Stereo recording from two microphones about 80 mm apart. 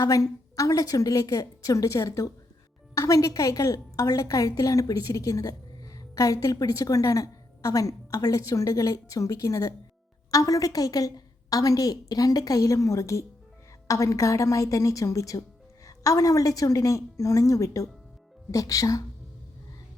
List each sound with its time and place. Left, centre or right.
0.0 s a woman's voice: left